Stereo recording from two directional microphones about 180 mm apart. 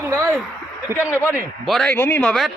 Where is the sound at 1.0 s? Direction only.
15° left (ahead or behind).